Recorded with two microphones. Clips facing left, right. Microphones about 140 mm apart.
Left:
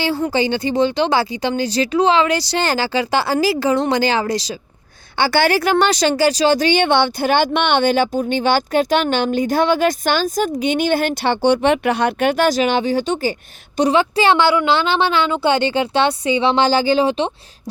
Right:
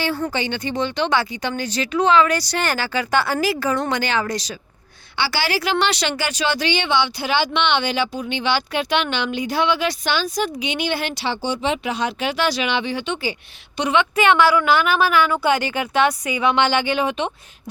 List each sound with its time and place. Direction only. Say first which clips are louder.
0.0 s a woman's voice: left 5 dB; 30° left (ahead or behind)
5.1 s a woman's voice: left 7 dB; 50° left (ahead or behind); by 17.3 s 30° left (ahead or behind)